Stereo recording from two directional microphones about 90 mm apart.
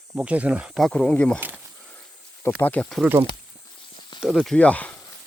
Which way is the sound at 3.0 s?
15° right (ahead or behind).